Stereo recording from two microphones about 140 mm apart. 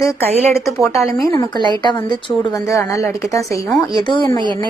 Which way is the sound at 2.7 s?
20° left (ahead or behind).